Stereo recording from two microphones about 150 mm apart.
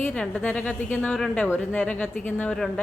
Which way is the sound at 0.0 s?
5° left (ahead or behind).